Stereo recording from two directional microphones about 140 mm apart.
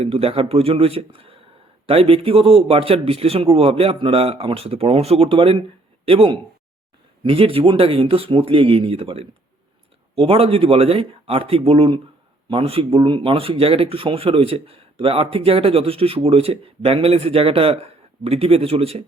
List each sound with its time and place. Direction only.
0.0 s speech: 45° right (ahead or behind)